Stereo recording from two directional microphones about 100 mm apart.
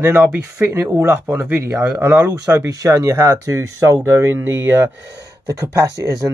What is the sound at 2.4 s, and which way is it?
Speech, 35° right (ahead or behind).